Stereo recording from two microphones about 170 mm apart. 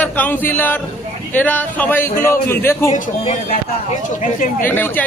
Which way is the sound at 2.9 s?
50° left (ahead or behind).